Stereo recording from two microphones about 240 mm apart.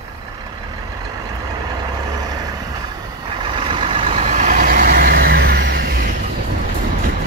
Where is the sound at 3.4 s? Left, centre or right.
Right.